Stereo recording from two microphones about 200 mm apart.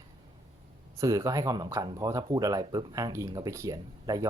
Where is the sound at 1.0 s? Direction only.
15° right (ahead or behind).